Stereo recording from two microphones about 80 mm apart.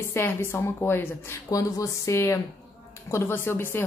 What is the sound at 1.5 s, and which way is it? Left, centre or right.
Speech, left.